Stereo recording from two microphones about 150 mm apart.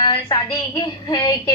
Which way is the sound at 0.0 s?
30° left (ahead or behind).